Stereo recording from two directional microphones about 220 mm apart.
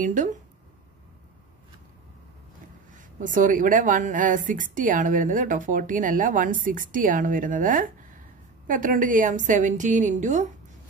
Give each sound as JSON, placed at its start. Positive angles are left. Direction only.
{"t": 0.0, "sound": "a woman's voice", "side_deg": -35}
{"t": 2.9, "sound": "a woman's voice", "side_deg": -35}